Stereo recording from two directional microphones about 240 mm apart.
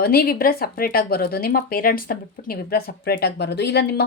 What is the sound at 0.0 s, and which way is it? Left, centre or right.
A woman's voice, left.